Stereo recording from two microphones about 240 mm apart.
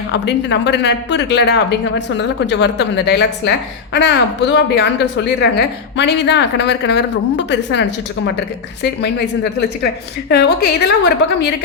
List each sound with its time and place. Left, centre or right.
0.1 s a woman's voice: left